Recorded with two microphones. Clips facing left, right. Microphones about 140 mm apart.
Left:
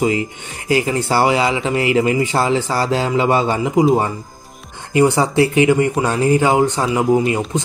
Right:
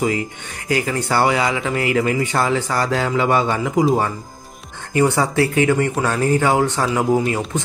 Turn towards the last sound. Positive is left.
turn(degrees=5)  # may be behind; listen again after turning